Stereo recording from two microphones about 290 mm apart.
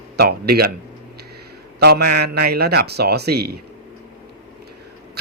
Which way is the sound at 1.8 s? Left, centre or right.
Right.